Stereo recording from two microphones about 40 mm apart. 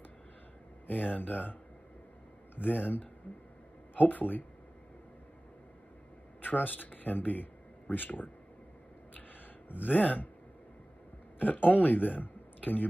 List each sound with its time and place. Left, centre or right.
1.1 s speech: left
2.5 s speech: left
6.4 s speech: left
9.7 s speech: left
9.9 s speech: left
11.3 s speech: left